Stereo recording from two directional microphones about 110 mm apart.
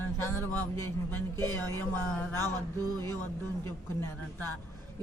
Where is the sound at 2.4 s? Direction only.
35° right (ahead or behind).